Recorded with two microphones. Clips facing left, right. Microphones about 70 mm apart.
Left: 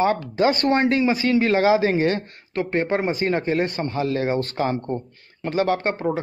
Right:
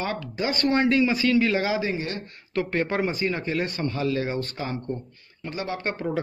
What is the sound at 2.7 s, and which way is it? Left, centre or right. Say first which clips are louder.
Speech: left 5 dB; left.